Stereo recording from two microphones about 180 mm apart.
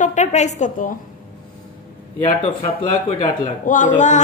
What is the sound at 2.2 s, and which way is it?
A woman's voice, 35° left (ahead or behind).